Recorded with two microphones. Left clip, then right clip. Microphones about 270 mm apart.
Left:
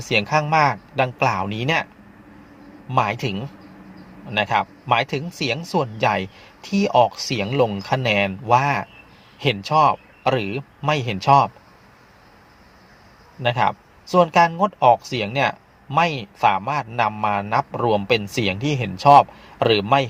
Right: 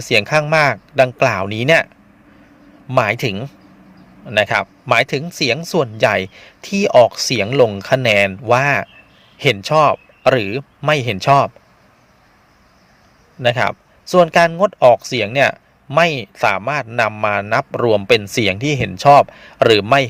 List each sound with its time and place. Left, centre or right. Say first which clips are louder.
0.0 s speech: right 5 dB; right
13.4 s speech: right 4 dB; right